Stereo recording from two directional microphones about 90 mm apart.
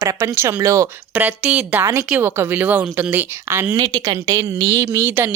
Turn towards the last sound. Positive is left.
turn(degrees=-25)  # may be behind; listen again after turning